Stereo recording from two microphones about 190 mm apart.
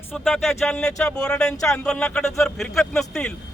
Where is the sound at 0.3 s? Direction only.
Centre (ahead or behind).